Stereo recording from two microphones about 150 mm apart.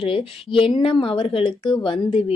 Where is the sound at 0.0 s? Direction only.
35° left (ahead or behind).